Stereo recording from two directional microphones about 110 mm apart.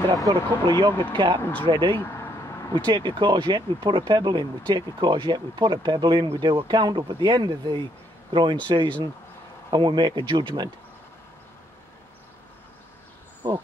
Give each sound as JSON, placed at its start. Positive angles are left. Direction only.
{"t": 0.3, "sound": "speech", "side_deg": -45}
{"t": 1.4, "sound": "speech", "side_deg": 15}
{"t": 1.7, "sound": "speech", "side_deg": -45}
{"t": 2.0, "sound": "vehicle", "side_deg": 20}
{"t": 2.7, "sound": "a man's voice", "side_deg": -45}
{"t": 13.4, "sound": "speech", "side_deg": -45}